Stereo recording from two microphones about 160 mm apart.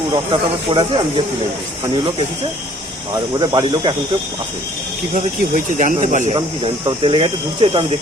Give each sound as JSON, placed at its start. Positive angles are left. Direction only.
{"t": 0.1, "sound": "speech", "side_deg": -30}
{"t": 3.3, "sound": "speech", "side_deg": -25}
{"t": 5.1, "sound": "speech", "side_deg": -50}
{"t": 6.3, "sound": "speech", "side_deg": -35}